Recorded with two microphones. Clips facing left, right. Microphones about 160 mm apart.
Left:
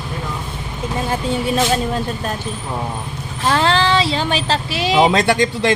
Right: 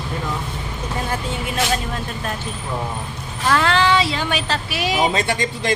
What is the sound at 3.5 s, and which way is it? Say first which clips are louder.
Speech: left 1 dB; 30° left (ahead or behind).